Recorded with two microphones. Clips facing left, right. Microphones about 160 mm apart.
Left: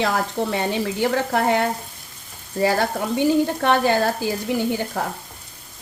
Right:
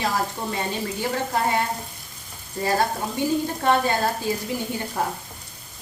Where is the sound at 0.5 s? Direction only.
70° left (ahead or behind).